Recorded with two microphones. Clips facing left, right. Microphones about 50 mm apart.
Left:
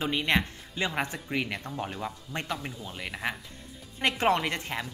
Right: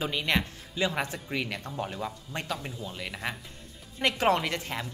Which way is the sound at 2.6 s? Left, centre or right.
Centre.